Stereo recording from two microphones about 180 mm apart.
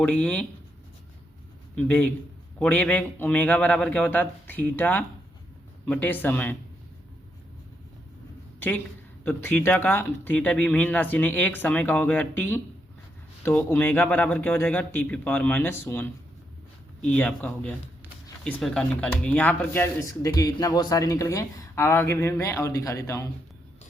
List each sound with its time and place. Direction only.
0.0 s speech: 5° left (ahead or behind)
2.6 s speech: 5° left (ahead or behind)
8.5 s a sound: 10° left (ahead or behind)
9.2 s speech: 10° left (ahead or behind)